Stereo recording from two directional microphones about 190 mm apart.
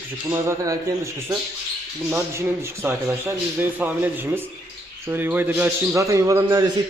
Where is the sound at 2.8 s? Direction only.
10° right (ahead or behind).